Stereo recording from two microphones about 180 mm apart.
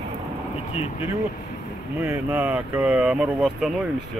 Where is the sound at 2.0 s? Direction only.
15° right (ahead or behind).